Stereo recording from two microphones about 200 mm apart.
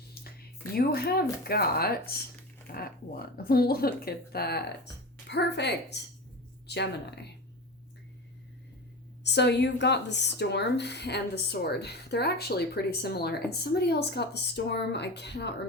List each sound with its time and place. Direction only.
0.7 s a woman's voice: 50° left (ahead or behind)
9.2 s a woman's voice: 60° left (ahead or behind)